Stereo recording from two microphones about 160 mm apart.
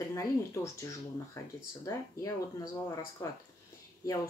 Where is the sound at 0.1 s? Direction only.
20° left (ahead or behind).